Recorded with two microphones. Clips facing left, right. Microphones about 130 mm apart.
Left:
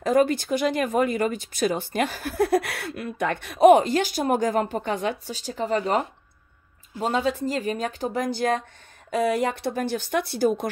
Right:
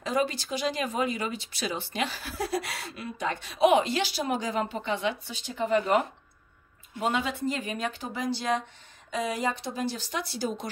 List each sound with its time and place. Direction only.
0.0 s speech: 50° left (ahead or behind)
8.2 s speech: 50° left (ahead or behind)